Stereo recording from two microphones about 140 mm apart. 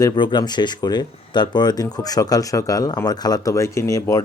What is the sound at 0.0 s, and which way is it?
Speech, 30° left (ahead or behind).